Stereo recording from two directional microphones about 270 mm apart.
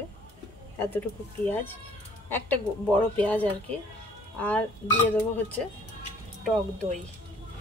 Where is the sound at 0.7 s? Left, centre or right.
Centre.